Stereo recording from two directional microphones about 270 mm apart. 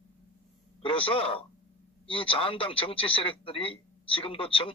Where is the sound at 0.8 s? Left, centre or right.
Centre.